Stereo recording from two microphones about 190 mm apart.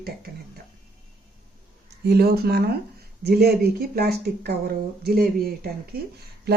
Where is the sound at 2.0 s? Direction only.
55° right (ahead or behind).